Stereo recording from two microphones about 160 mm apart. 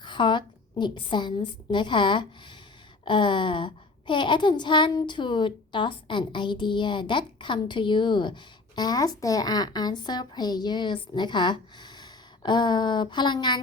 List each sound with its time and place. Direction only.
0.0 s a woman's voice: 30° left (ahead or behind)